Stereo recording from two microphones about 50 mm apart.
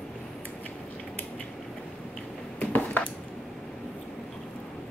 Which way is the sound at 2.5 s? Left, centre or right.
Left.